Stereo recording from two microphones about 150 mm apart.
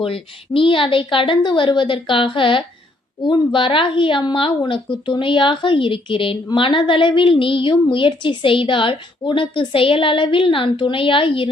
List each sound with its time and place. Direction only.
0.0 s a woman's voice: 35° left (ahead or behind)